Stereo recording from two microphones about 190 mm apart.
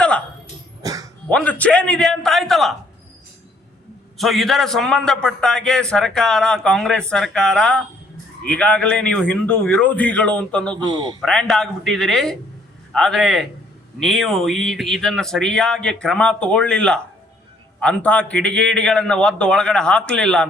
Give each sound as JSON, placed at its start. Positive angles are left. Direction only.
{"t": 0.8, "sound": "a sound", "side_deg": -20}
{"t": 1.3, "sound": "a man's voice", "side_deg": 5}
{"t": 4.2, "sound": "a man's voice", "side_deg": 0}
{"t": 10.8, "sound": "a man's voice", "side_deg": -20}
{"t": 11.2, "sound": "a man's voice", "side_deg": 5}